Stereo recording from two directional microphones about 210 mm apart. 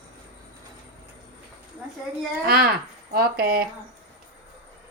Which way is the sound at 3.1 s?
45° right (ahead or behind).